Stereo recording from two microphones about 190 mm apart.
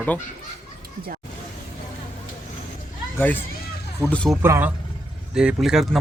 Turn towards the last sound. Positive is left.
turn(degrees=0)  # may be behind; listen again after turning